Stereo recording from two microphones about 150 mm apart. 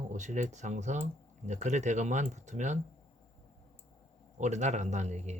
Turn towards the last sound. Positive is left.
turn(degrees=-50)  # may be behind; listen again after turning